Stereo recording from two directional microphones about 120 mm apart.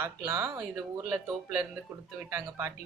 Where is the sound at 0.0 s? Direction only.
20° right (ahead or behind).